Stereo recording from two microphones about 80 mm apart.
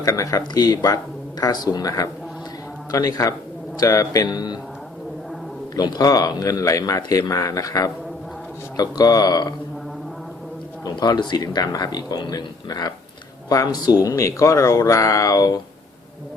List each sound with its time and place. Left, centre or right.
0.0 s speech: left
5.7 s speech: left
10.8 s speech: left